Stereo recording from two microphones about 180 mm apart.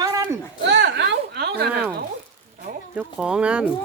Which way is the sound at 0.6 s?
75° right (ahead or behind).